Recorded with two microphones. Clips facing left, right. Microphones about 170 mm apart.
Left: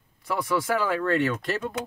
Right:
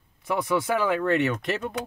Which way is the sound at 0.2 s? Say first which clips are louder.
Right 1 dB; 20° right (ahead or behind).